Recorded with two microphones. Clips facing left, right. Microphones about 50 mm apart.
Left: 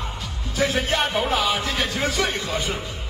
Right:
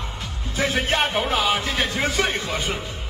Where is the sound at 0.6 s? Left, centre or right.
Right.